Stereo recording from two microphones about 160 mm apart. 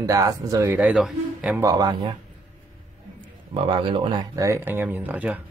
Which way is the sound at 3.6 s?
30° right (ahead or behind).